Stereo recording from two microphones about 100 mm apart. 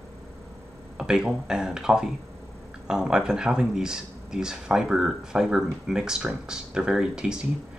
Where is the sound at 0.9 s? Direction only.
5° right (ahead or behind).